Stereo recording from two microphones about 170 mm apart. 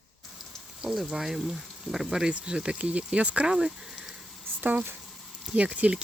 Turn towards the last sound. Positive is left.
turn(degrees=-5)  # may be behind; listen again after turning